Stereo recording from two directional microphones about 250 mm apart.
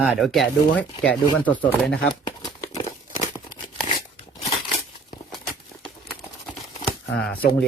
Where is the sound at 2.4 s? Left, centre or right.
Centre.